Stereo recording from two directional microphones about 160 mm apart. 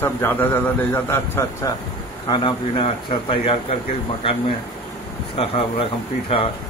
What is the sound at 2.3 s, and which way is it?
Speech, 35° left (ahead or behind).